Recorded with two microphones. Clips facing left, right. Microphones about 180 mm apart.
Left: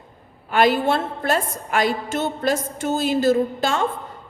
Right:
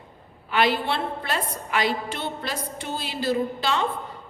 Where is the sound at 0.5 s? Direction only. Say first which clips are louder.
Left 5 dB; 45° left (ahead or behind).